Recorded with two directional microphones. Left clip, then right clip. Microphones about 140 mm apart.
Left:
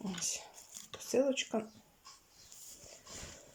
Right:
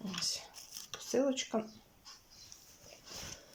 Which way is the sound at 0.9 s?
15° left (ahead or behind).